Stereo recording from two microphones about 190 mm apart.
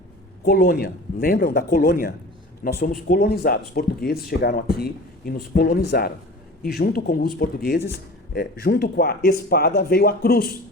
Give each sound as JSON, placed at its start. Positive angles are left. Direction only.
{"t": 0.4, "sound": "speech", "side_deg": 55}